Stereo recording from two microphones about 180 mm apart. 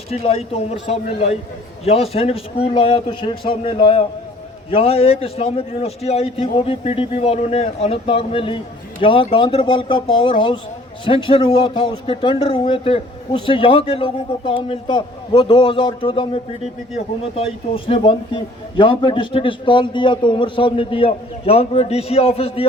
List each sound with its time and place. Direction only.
0.1 s a man's voice: 35° left (ahead or behind)